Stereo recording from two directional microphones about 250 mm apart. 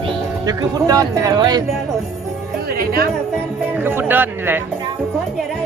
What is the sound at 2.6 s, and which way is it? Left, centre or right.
Music, right.